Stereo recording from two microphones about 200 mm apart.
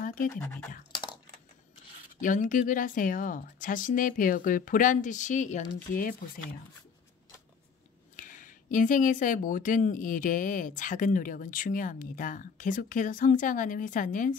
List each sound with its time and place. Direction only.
0.0 s scratch: 45° left (ahead or behind)
0.3 s speech: 5° left (ahead or behind)
2.1 s speech: 40° left (ahead or behind)
8.2 s speech: 40° left (ahead or behind)